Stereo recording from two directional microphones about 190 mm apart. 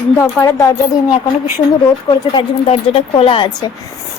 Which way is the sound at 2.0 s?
30° left (ahead or behind).